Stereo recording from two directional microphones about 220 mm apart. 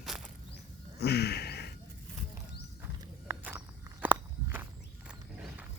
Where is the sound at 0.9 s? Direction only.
50° left (ahead or behind).